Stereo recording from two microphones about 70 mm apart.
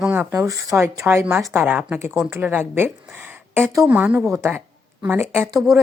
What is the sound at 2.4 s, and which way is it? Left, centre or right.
Speech, right.